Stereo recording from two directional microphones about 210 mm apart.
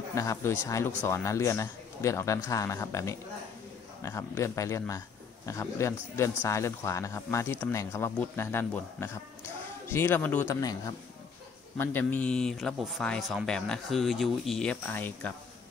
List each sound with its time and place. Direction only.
0.1 s a man's voice: 15° left (ahead or behind)
11.8 s a man's voice: 10° left (ahead or behind)